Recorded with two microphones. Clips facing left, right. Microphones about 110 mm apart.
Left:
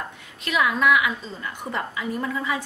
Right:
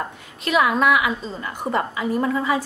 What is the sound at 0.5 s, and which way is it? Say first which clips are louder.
A woman's voice: right 3 dB; 35° right (ahead or behind).